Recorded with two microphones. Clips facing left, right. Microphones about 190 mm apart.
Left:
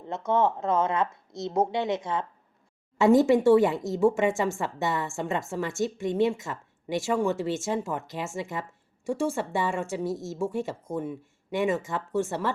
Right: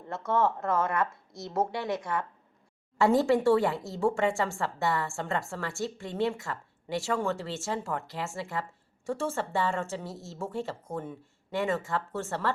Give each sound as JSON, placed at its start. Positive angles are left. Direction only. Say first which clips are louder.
{"t": 0.0, "sound": "a woman's voice", "louder": "left 3 dB", "side_deg": 20}